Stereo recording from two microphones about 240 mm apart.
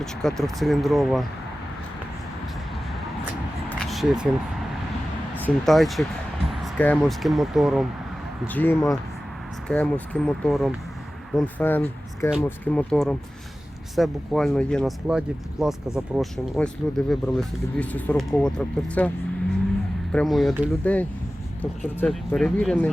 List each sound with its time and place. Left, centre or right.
0.0 s speech: centre
3.7 s a sound: centre
5.5 s speech: centre
20.1 s speech: centre